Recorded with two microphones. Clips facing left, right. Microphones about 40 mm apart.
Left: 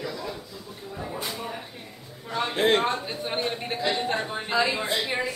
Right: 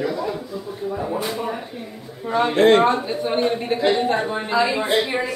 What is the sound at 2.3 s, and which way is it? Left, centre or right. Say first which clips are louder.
Speech: right 9 dB; right.